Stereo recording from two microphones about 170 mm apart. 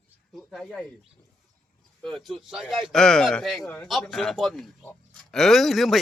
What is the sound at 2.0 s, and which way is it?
Speech, centre (ahead or behind).